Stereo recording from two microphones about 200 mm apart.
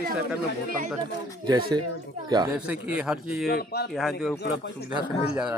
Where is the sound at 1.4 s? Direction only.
20° right (ahead or behind).